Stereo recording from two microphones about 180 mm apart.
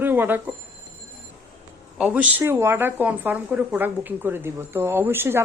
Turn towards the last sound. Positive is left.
turn(degrees=-10)  # may be behind; listen again after turning